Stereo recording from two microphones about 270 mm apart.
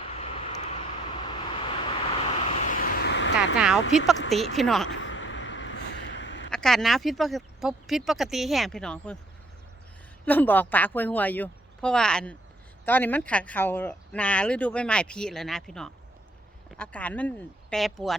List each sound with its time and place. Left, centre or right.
0.2 s vehicle: left
3.3 s a sound: centre
3.9 s speech: centre
4.9 s a sound: left
6.5 s speech: centre
10.2 s a woman's voice: centre